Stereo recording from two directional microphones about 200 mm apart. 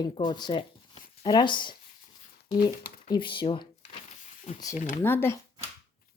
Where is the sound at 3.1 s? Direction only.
25° left (ahead or behind).